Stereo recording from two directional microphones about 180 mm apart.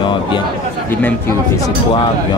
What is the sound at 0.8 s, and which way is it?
Speech, 10° left (ahead or behind).